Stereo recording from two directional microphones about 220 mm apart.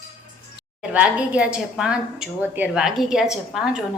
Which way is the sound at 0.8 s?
5° right (ahead or behind).